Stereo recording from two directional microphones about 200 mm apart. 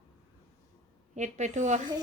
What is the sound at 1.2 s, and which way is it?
Speech, 35° right (ahead or behind).